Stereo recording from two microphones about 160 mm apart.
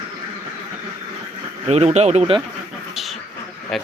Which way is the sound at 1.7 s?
45° right (ahead or behind).